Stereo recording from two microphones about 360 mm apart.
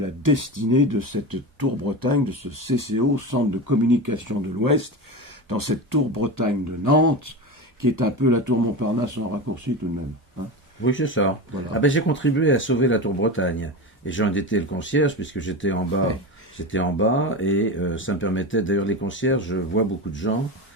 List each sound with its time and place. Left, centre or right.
0.0 s speech: right
10.8 s speech: left